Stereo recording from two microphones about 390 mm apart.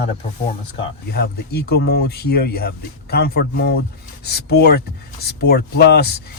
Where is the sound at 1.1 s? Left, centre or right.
Left.